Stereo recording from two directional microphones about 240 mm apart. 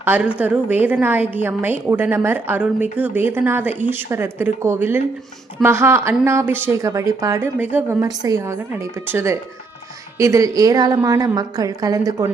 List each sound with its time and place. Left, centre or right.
0.0 s a woman's voice: centre